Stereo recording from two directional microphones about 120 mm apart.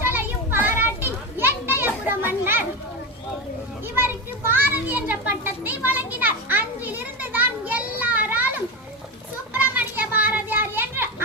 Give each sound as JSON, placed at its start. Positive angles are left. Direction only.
{"t": 0.0, "sound": "children playing", "side_deg": -15}
{"t": 3.9, "sound": "children playing", "side_deg": -15}